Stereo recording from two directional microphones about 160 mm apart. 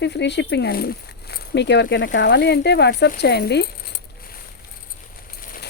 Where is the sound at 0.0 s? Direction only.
90° left.